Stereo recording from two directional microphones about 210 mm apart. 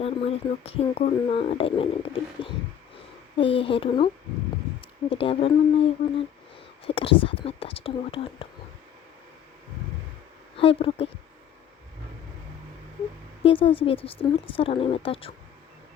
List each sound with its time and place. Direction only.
0.0 s a woman's voice: 30° left (ahead or behind)
3.3 s a woman's voice: 25° left (ahead or behind)
10.6 s a woman's voice: 25° left (ahead or behind)
13.4 s a woman's voice: 25° left (ahead or behind)